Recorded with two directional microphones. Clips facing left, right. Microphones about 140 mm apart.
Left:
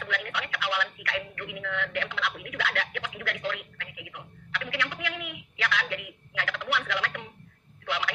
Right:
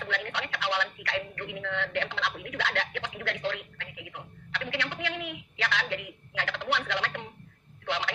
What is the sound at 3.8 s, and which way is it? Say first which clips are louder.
Telephone: right 1 dB; 30° right (ahead or behind).